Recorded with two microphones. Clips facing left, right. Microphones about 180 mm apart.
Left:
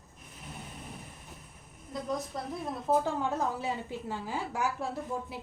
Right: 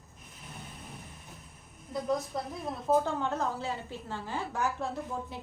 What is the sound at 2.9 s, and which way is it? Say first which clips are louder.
A woman's voice: right 1 dB; 5° left (ahead or behind).